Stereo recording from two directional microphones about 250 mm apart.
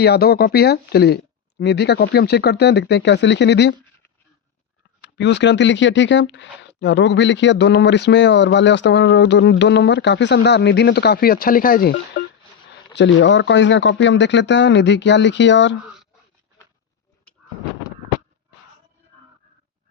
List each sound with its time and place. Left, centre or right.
0.0 s speech: left
4.9 s speech: left
12.1 s telephone dialing: left
13.0 s speech: left